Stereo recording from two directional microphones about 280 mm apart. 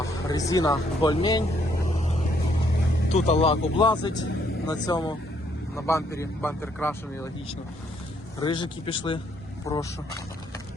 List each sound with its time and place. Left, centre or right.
0.0 s speech: centre
2.0 s vehicle: left
3.1 s speech: left; by 6.9 s centre
8.4 s speech: centre